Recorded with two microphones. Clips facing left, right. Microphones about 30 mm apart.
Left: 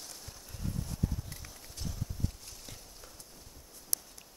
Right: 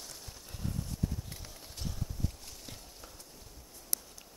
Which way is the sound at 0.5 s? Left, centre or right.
Centre.